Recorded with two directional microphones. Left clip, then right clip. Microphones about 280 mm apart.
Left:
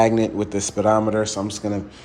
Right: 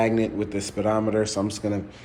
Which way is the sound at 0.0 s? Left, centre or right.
Centre.